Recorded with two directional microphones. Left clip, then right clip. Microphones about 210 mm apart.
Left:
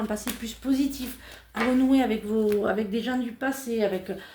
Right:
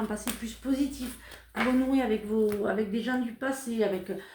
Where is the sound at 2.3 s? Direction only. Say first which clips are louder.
Left 4 dB; 45° left (ahead or behind).